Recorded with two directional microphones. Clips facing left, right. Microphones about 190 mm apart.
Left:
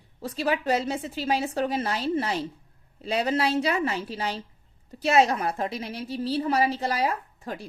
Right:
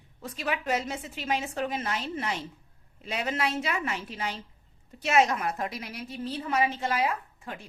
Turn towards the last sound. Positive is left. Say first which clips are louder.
# left 4 dB
turn(degrees=35)  # may be behind; listen again after turning